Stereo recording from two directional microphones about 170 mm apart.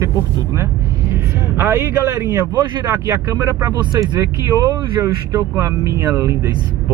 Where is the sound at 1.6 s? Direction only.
15° right (ahead or behind).